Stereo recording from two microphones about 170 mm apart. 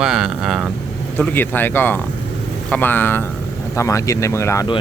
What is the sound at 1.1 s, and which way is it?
Speech, 10° left (ahead or behind).